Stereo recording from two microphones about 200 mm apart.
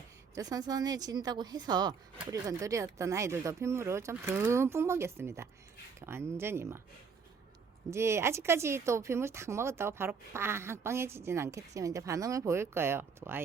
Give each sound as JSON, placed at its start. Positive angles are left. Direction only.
{"t": 0.3, "sound": "a woman's voice", "side_deg": -20}
{"t": 7.9, "sound": "speech", "side_deg": -15}